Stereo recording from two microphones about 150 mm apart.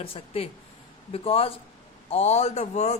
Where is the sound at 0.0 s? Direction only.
40° left (ahead or behind).